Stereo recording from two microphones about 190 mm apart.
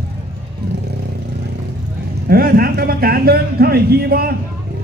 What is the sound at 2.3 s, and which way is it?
A man's voice, 50° right (ahead or behind).